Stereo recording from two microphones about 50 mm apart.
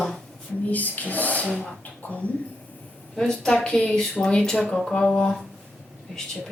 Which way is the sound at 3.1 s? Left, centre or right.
Centre.